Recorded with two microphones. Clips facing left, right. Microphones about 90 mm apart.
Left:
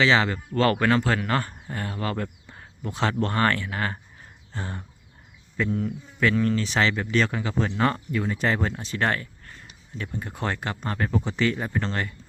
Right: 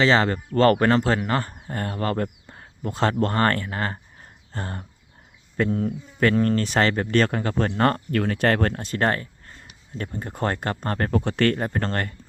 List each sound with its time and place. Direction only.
0.0 s speech: 40° right (ahead or behind)
1.7 s speech: 40° right (ahead or behind)